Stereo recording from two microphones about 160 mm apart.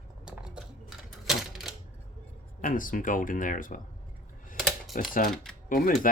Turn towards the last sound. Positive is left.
turn(degrees=60)  # may be behind; listen again after turning